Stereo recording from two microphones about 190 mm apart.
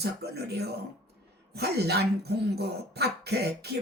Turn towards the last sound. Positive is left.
turn(degrees=-60)  # may be behind; listen again after turning